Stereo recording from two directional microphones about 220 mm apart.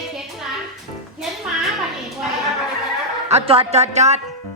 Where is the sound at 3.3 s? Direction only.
30° right (ahead or behind).